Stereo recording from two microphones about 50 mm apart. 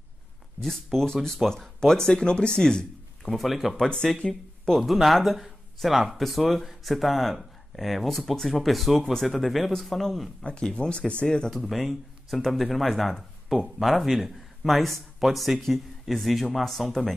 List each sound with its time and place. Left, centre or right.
0.9 s speech: centre
3.3 s speech: centre
3.9 s speech: centre
10.4 s speech: left
11.5 s speech: centre